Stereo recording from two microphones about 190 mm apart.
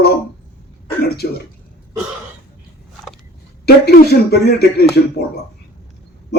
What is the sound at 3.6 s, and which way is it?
A man's voice, 55° left (ahead or behind).